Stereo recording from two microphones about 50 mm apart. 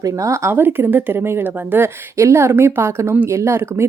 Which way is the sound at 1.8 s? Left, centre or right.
Right.